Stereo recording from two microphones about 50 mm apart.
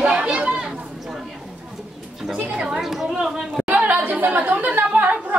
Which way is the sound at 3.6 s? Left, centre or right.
Right.